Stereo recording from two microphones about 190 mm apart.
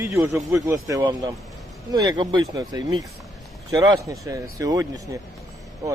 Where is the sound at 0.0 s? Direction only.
15° right (ahead or behind).